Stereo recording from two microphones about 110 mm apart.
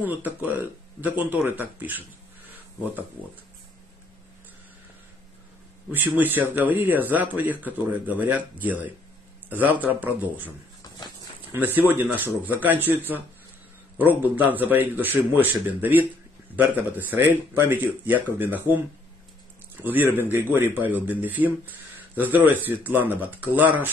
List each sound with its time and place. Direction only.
0.0 s speech: 15° right (ahead or behind)
2.5 s a sound: 15° right (ahead or behind)
5.9 s speech: 15° right (ahead or behind)
10.8 s a sound: 35° left (ahead or behind)
11.5 s speech: 20° right (ahead or behind)
19.8 s speech: 15° right (ahead or behind)